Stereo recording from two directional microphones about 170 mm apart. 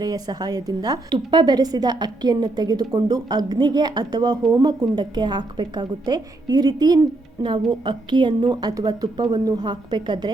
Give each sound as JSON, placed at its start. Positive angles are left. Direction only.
{"t": 0.0, "sound": "a woman's voice", "side_deg": -25}